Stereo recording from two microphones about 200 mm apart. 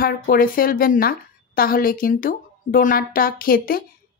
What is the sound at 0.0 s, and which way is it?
Speech, 45° left (ahead or behind).